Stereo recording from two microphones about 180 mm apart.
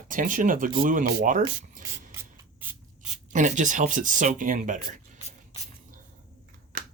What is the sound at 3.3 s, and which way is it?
Speech, 45° right (ahead or behind).